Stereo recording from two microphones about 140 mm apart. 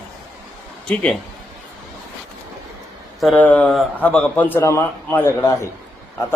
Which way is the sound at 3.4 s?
10° left (ahead or behind).